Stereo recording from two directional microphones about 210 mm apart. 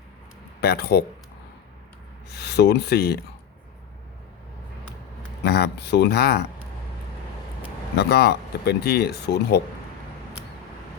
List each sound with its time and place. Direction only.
0.6 s speech: 50° left (ahead or behind)
2.3 s speech: 50° left (ahead or behind)
5.4 s speech: 50° left (ahead or behind)
7.9 s speech: 50° left (ahead or behind)